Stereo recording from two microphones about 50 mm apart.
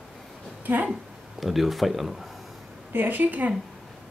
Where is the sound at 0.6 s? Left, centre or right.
Right.